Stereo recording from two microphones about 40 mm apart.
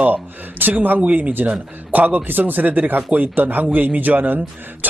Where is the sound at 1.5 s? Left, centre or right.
Right.